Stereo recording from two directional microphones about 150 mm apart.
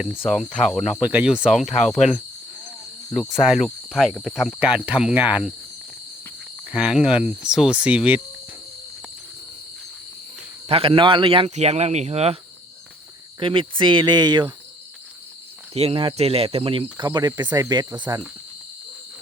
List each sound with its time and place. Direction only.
0.3 s cricket: 5° left (ahead or behind)
6.7 s speech: 5° right (ahead or behind)
10.7 s speech: 40° right (ahead or behind)
13.4 s speech: 35° right (ahead or behind)
15.7 s speech: 40° right (ahead or behind)
18.1 s cricket: 20° right (ahead or behind)